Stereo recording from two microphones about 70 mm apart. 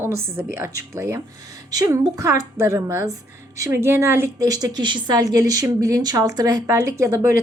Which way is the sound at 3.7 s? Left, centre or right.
Right.